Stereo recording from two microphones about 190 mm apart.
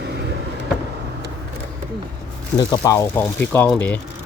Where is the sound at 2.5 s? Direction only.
20° left (ahead or behind).